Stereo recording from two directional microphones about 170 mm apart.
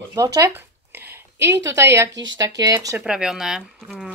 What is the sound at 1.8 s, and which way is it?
Speech, 15° right (ahead or behind).